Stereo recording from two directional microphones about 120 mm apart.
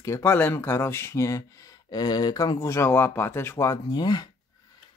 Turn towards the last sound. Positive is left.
turn(degrees=35)  # may be behind; listen again after turning